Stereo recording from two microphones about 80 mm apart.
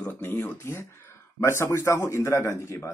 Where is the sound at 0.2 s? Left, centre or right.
Left.